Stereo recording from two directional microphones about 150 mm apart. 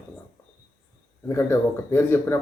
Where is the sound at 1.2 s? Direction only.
15° left (ahead or behind).